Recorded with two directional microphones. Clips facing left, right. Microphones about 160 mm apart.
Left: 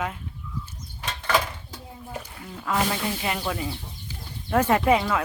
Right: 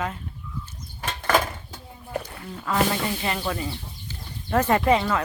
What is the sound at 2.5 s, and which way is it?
Speech, 5° left (ahead or behind).